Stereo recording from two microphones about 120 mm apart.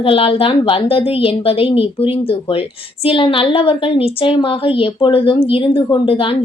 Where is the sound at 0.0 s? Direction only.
50° left (ahead or behind).